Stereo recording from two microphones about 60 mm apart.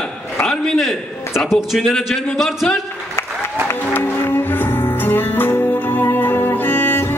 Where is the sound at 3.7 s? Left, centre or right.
Left.